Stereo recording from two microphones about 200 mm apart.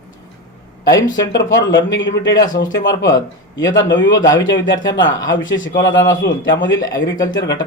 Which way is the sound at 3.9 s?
65° left (ahead or behind).